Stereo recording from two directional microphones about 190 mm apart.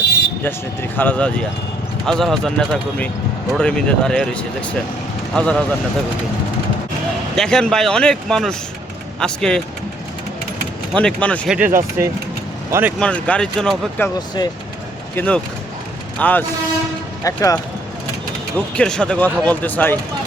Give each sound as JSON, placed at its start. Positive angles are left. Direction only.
{"t": 0.4, "sound": "speech", "side_deg": 10}
{"t": 7.3, "sound": "speech", "side_deg": 5}
{"t": 10.9, "sound": "speech", "side_deg": 5}
{"t": 11.5, "sound": "speech", "side_deg": -10}
{"t": 13.0, "sound": "speech", "side_deg": 5}
{"t": 14.2, "sound": "speech", "side_deg": 20}
{"t": 15.1, "sound": "speech", "side_deg": 10}
{"t": 18.5, "sound": "speech", "side_deg": 5}